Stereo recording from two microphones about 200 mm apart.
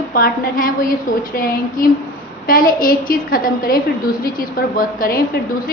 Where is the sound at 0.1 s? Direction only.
45° left (ahead or behind).